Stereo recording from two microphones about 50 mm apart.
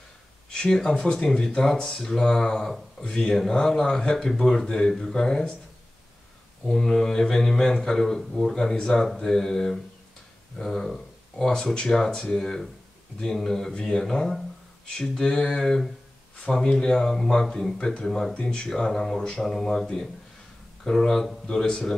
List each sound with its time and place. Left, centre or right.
0.5 s speech: centre
6.7 s speech: centre
18.3 s speech: centre
18.7 s speech: centre